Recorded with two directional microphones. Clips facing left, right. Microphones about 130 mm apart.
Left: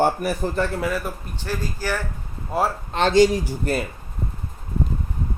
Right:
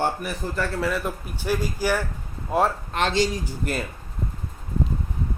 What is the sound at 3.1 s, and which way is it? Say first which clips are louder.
Speech: left 8 dB; 45° left (ahead or behind).